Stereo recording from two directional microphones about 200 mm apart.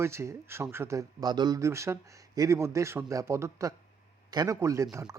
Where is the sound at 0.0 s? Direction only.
15° right (ahead or behind).